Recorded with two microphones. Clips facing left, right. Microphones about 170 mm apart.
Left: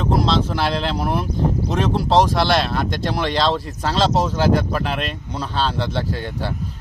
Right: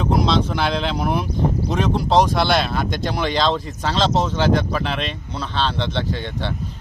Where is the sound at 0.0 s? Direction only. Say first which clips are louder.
Even; centre (ahead or behind).